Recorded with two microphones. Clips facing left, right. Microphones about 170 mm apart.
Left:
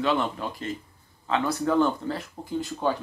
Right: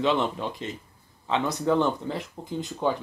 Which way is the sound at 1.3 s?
20° right (ahead or behind).